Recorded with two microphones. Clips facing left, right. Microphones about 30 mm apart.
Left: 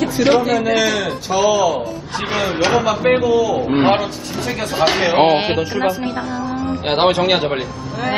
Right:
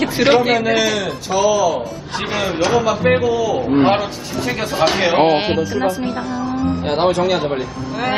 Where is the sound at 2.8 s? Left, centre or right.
Centre.